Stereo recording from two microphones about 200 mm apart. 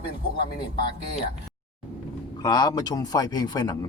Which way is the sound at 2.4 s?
20° left (ahead or behind).